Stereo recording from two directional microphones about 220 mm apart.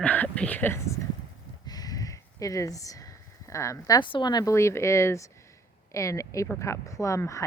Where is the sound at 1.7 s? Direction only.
15° left (ahead or behind).